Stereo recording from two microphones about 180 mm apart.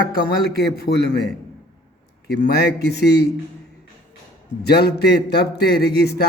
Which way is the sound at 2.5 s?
60° left (ahead or behind).